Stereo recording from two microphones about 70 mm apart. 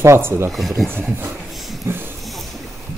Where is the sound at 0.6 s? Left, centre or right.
Centre.